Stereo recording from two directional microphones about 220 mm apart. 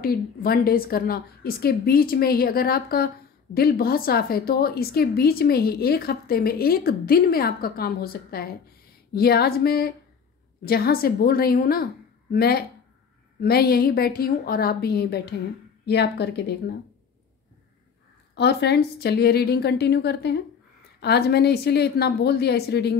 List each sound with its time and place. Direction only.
0.0 s a woman's voice: 40° left (ahead or behind)
18.3 s a woman's voice: 50° left (ahead or behind)